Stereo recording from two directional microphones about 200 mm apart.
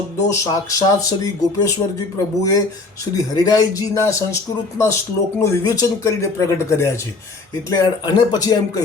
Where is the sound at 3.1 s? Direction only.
20° left (ahead or behind).